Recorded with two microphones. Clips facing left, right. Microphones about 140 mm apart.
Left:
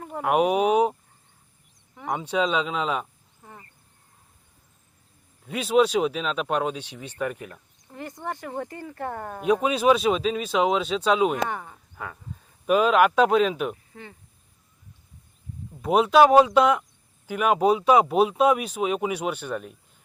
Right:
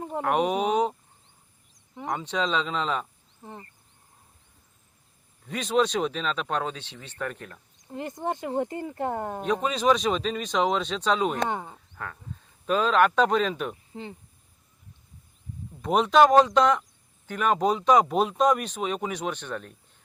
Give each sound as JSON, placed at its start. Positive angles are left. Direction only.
{"t": 0.2, "sound": "speech", "side_deg": 10}
{"t": 2.0, "sound": "speech", "side_deg": 10}
{"t": 3.4, "sound": "speech", "side_deg": -25}
{"t": 5.5, "sound": "speech", "side_deg": 5}
{"t": 7.9, "sound": "speech", "side_deg": -20}
{"t": 9.4, "sound": "speech", "side_deg": 10}
{"t": 11.4, "sound": "speech", "side_deg": -20}
{"t": 11.9, "sound": "speech", "side_deg": 10}
{"t": 13.9, "sound": "speech", "side_deg": -20}
{"t": 15.8, "sound": "speech", "side_deg": 5}